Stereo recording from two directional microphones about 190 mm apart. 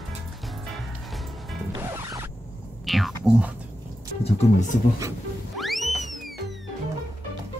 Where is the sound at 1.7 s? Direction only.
15° right (ahead or behind).